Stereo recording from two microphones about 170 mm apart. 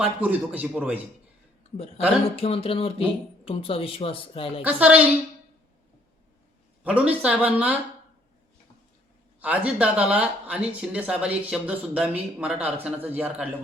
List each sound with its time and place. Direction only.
0.0 s speech: 10° right (ahead or behind)
2.3 s a woman's voice: 35° left (ahead or behind)
4.6 s speech: 10° right (ahead or behind)
6.8 s speech: 10° right (ahead or behind)
9.4 s speech: 10° right (ahead or behind)